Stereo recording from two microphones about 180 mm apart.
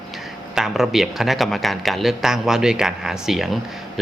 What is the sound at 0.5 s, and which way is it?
Speech, centre (ahead or behind).